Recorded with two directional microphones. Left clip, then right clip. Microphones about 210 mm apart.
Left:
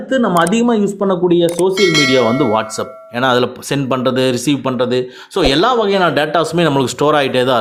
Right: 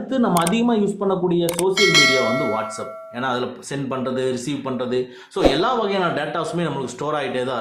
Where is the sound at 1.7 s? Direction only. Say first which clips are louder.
Right 2 dB; centre (ahead or behind).